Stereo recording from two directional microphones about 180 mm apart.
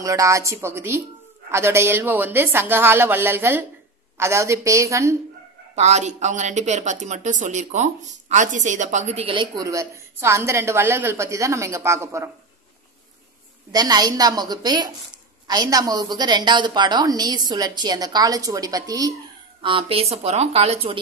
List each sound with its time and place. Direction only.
0.0 s a woman's voice: 15° right (ahead or behind)
5.8 s a woman's voice: 40° right (ahead or behind); by 12.3 s 15° right (ahead or behind)
13.7 s a woman's voice: 20° right (ahead or behind)